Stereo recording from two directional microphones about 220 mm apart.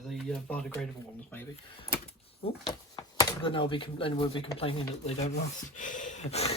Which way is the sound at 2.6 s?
20° left (ahead or behind).